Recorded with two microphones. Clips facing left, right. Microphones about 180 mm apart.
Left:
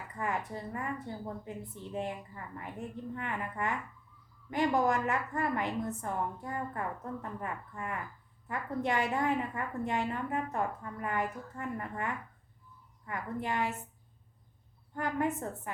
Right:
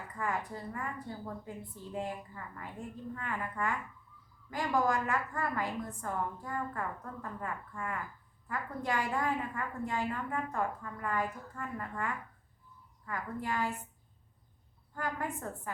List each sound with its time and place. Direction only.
0.2 s a woman's voice: 20° left (ahead or behind)
14.9 s a woman's voice: 20° left (ahead or behind)